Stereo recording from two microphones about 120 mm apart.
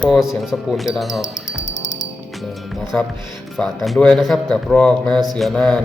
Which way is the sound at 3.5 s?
Centre (ahead or behind).